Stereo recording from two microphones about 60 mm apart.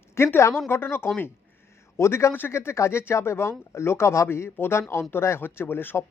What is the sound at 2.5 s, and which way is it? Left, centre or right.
Speech, left.